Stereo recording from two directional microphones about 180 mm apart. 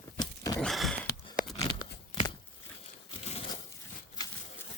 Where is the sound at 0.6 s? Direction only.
Centre (ahead or behind).